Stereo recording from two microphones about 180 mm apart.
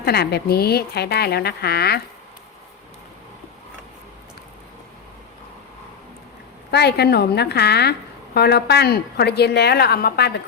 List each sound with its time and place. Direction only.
0.0 s a woman's voice: 65° left (ahead or behind)
6.7 s a woman's voice: 65° left (ahead or behind)